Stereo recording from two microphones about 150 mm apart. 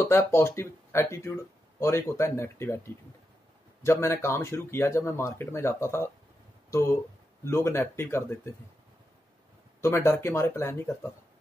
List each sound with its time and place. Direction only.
0.0 s speech: 20° left (ahead or behind)
9.8 s speech: 15° left (ahead or behind)